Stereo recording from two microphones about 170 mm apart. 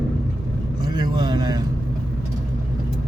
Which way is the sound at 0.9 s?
25° right (ahead or behind).